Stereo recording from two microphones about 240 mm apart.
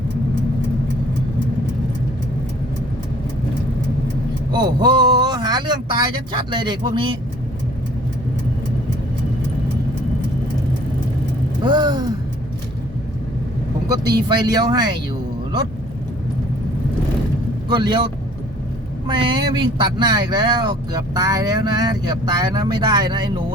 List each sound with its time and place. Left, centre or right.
4.5 s speech: centre
11.6 s a sound: centre
13.8 s speech: centre
17.7 s speech: centre